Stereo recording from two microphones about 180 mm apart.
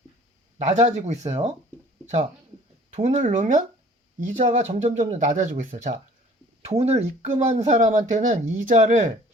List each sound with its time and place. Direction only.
0.8 s speech: 40° right (ahead or behind)
2.9 s speech: 40° right (ahead or behind)